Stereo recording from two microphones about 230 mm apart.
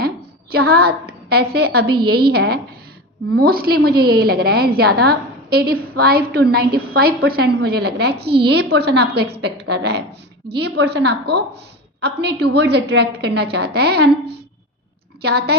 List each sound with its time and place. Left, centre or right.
0.7 s a woman's voice: right